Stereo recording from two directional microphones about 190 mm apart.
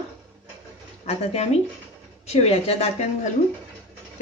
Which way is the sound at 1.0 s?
35° left (ahead or behind).